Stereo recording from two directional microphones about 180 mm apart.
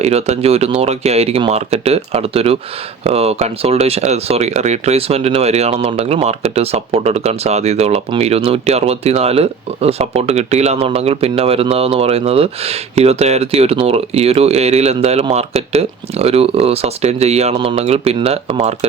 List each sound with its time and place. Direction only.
0.0 s speech: 35° right (ahead or behind)